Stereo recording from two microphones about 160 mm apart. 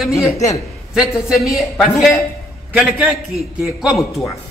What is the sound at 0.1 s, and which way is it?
Speech, 20° left (ahead or behind).